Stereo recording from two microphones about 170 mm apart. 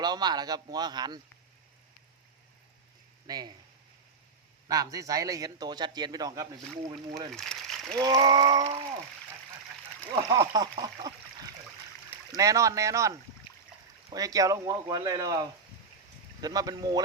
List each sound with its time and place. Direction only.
0.0 s speech: 25° right (ahead or behind)
3.2 s speech: 20° right (ahead or behind)
4.7 s speech: 20° right (ahead or behind)
7.3 s speech: 5° left (ahead or behind)
7.9 s speech: 25° right (ahead or behind)
10.2 s speech: 25° right (ahead or behind)
12.3 s speech: 20° right (ahead or behind)